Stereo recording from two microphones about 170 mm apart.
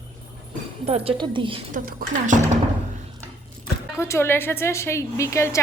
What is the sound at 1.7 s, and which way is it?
Speech, 55° right (ahead or behind).